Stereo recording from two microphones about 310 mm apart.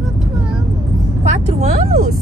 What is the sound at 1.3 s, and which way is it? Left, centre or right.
Speech, right.